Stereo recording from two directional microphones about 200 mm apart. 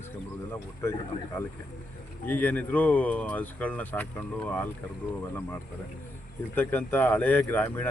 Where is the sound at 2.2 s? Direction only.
10° left (ahead or behind).